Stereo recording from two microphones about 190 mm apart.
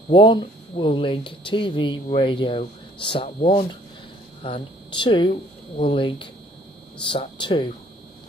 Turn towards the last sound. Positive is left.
turn(degrees=25)  # may be behind; listen again after turning